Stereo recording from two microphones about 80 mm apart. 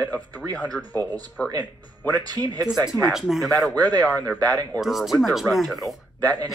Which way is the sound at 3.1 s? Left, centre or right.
Centre.